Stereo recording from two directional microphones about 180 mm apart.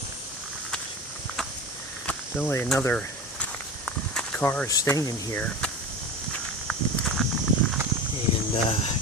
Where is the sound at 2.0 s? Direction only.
10° left (ahead or behind).